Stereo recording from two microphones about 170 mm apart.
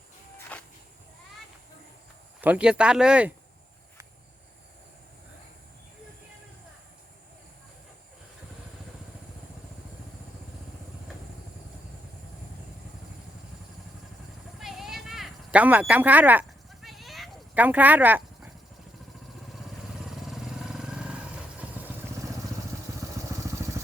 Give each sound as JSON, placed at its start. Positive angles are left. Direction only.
{"t": 0.5, "sound": "a sound", "side_deg": 10}
{"t": 2.4, "sound": "speech", "side_deg": -5}
{"t": 14.6, "sound": "a sound", "side_deg": 0}
{"t": 17.6, "sound": "speech", "side_deg": -10}
{"t": 20.1, "sound": "vehicle", "side_deg": 0}
{"t": 23.3, "sound": "vehicle", "side_deg": -15}